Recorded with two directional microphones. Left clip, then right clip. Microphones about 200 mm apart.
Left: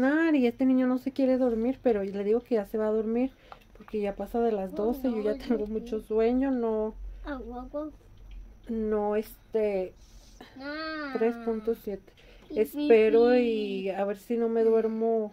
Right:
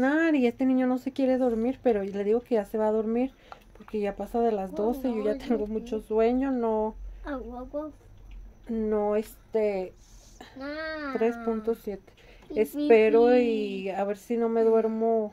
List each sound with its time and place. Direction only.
0.0 s speech: 10° left (ahead or behind)
7.2 s speech: 40° right (ahead or behind)
8.6 s speech: 10° left (ahead or behind)
10.6 s speech: 40° right (ahead or behind)
11.1 s speech: 10° left (ahead or behind)